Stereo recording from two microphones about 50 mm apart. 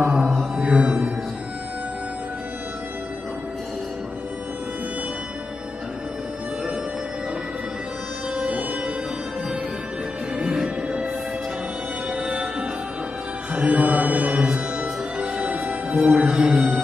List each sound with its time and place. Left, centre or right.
0.0 s mantra: centre
8.4 s music: right
10.3 s music: centre
12.1 s music: right
16.3 s music: centre